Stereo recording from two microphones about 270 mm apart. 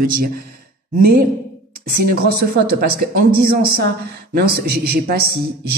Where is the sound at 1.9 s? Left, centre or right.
Right.